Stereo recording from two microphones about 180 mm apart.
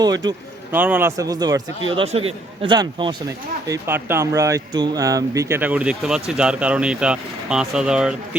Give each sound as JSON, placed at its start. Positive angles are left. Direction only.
{"t": 0.0, "sound": "speech", "side_deg": -20}
{"t": 0.8, "sound": "a man's voice", "side_deg": -10}
{"t": 3.7, "sound": "speech", "side_deg": -15}